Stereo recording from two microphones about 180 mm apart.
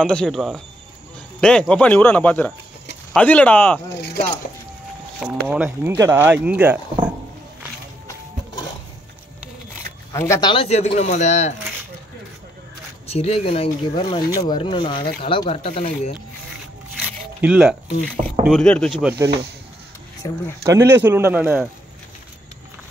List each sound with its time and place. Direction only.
0.0 s speech: 5° left (ahead or behind)
3.9 s speech: 70° left (ahead or behind)
5.2 s speech: 5° right (ahead or behind)
5.9 s speech: 15° right (ahead or behind)
10.1 s speech: 15° left (ahead or behind)
10.5 s speech: 35° left (ahead or behind)
13.0 s speech: 35° left (ahead or behind)
17.0 s scrape: 5° right (ahead or behind)
18.4 s speech: centre (ahead or behind)
20.2 s speech: 20° left (ahead or behind)
20.6 s speech: 15° right (ahead or behind)